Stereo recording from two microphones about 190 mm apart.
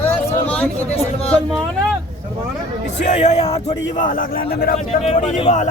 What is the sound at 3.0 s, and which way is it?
A man's voice, 35° left (ahead or behind).